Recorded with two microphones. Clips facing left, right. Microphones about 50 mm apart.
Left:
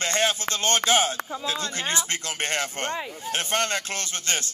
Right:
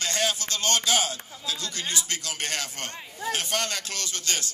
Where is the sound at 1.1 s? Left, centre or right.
Left.